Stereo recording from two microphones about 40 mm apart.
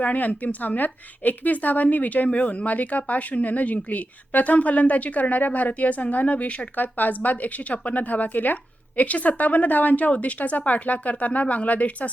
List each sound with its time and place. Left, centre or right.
0.0 s a woman's voice: left
6.7 s a woman's voice: left